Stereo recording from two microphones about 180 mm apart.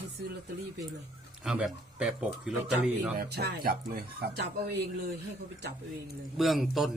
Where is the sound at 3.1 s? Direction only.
65° right (ahead or behind).